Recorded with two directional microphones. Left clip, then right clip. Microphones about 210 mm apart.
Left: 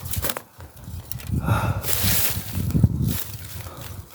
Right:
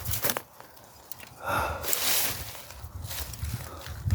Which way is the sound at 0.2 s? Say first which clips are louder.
Left 1 dB; 5° left (ahead or behind).